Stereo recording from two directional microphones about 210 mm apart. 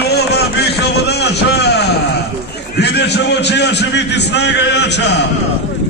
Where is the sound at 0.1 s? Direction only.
50° left (ahead or behind).